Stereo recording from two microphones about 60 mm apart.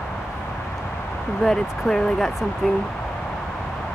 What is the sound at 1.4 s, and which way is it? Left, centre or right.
Speech, centre.